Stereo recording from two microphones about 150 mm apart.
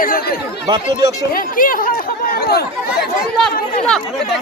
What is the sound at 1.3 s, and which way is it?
Speech, 70° left (ahead or behind).